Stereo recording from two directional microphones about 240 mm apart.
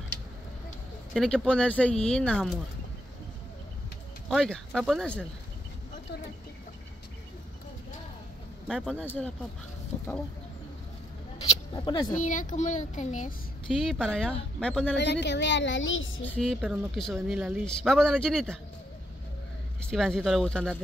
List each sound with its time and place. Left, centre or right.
1.1 s speech: centre
4.3 s speech: centre
8.6 s speech: centre
11.7 s speech: centre
12.2 s speech: left
13.7 s speech: centre
15.0 s a woman's voice: left
16.3 s speech: centre
19.8 s speech: centre